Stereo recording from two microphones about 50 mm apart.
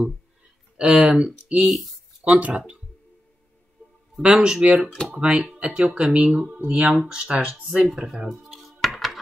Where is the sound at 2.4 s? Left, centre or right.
Right.